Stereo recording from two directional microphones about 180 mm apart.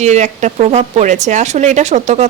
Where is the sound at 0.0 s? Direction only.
40° right (ahead or behind).